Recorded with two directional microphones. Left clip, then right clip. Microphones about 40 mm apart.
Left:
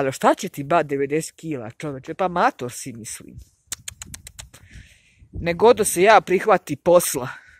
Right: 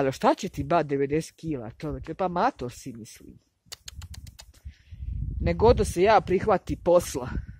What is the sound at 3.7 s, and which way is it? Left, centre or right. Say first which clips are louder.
Bird: left 8 dB; left.